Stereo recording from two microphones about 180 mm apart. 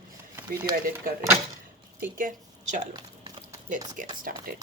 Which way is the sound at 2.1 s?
45° right (ahead or behind).